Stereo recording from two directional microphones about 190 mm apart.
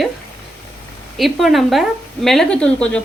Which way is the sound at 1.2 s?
Centre (ahead or behind).